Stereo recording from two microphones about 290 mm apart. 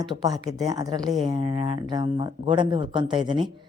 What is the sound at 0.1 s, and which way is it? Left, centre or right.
Speech, centre.